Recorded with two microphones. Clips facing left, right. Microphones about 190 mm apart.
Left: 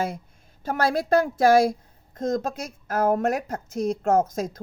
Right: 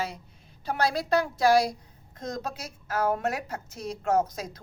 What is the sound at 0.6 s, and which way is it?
A woman's voice, 50° left (ahead or behind).